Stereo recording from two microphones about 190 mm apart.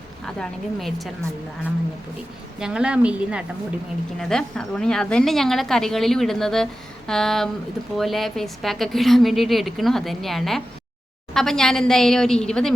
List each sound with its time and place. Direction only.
0.3 s a woman's voice: centre (ahead or behind)
2.6 s a woman's voice: 5° right (ahead or behind)